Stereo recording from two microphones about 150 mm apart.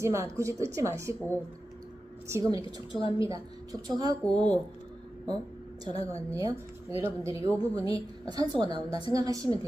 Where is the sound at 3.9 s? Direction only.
25° right (ahead or behind).